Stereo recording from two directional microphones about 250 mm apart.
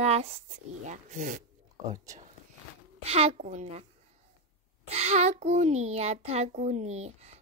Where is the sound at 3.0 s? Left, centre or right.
Right.